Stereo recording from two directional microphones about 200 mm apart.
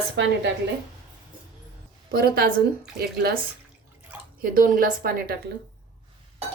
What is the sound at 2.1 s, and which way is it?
A woman's voice, 50° right (ahead or behind).